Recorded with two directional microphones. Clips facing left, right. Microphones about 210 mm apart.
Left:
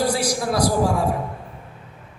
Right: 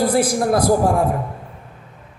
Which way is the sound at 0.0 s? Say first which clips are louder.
Right 5 dB; 55° right (ahead or behind).